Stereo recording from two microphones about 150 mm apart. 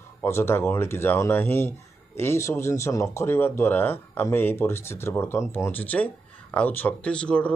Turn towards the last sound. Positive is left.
turn(degrees=5)  # may be behind; listen again after turning